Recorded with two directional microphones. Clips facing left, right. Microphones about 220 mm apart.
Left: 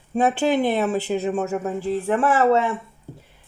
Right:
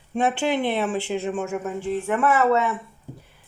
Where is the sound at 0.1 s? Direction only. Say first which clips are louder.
Left 3 dB; 40° left (ahead or behind).